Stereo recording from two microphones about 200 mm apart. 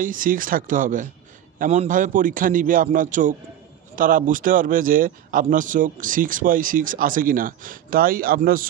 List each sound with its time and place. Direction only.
0.0 s a man's voice: 40° right (ahead or behind)